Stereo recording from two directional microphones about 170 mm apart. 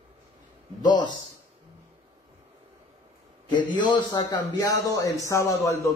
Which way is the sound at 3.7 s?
25° left (ahead or behind).